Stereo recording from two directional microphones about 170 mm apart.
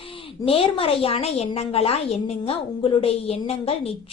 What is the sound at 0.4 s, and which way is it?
A woman's voice, 35° left (ahead or behind).